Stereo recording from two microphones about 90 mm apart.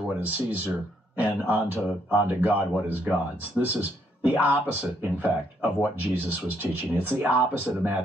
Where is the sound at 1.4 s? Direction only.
20° right (ahead or behind).